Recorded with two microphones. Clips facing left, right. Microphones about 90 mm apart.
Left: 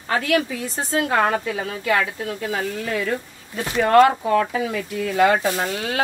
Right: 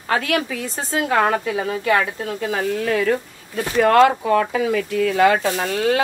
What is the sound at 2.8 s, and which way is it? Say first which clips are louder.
Speech: right 7 dB; 60° right (ahead or behind).